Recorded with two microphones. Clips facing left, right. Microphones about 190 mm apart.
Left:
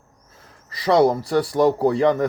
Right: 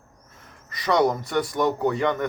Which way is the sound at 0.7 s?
30° left (ahead or behind).